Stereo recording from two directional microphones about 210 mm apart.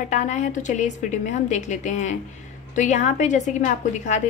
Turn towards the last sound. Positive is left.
turn(degrees=35)  # may be behind; listen again after turning